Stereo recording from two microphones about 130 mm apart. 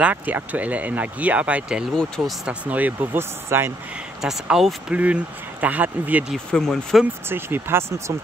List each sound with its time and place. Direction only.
0.0 s speech: 10° right (ahead or behind)
2.0 s speech: 5° left (ahead or behind)
2.4 s speech: 10° right (ahead or behind)
4.2 s speech: 5° right (ahead or behind)
6.3 s speech: 5° left (ahead or behind)
7.2 s speech: 15° right (ahead or behind)